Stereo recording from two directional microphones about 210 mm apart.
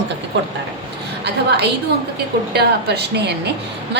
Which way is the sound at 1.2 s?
50° right (ahead or behind).